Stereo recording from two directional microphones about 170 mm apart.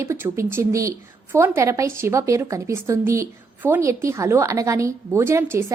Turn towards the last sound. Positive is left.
turn(degrees=-15)  # may be behind; listen again after turning